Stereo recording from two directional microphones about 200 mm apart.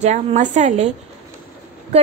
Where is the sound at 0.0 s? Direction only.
35° right (ahead or behind).